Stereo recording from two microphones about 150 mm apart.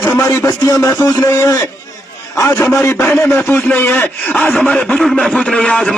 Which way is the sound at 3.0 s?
5° left (ahead or behind).